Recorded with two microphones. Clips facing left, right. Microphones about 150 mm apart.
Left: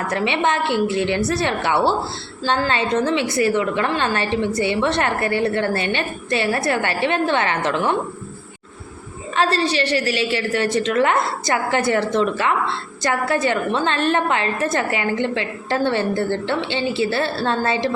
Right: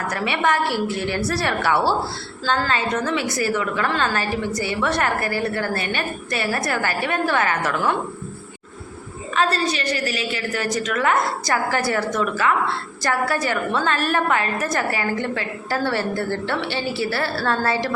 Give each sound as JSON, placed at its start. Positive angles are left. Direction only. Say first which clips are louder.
{"t": 0.1, "sound": "a woman's voice", "louder": "left 1 dB", "side_deg": 25}
{"t": 9.3, "sound": "a woman's voice", "louder": "left 2 dB", "side_deg": 30}